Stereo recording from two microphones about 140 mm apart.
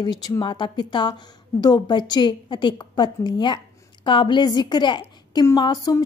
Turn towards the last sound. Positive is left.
turn(degrees=25)  # may be behind; listen again after turning